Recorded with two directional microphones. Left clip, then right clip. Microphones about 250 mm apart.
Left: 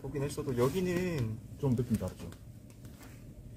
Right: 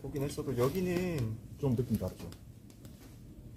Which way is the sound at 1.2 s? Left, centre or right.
Centre.